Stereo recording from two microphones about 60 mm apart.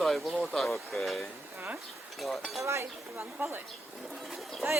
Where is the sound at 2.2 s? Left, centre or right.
Centre.